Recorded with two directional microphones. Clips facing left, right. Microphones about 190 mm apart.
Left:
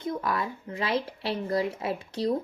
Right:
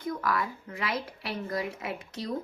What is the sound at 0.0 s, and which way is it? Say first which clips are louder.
A woman's voice: left 1 dB; 25° left (ahead or behind).